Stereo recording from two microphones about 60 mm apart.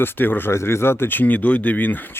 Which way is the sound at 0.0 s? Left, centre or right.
Left.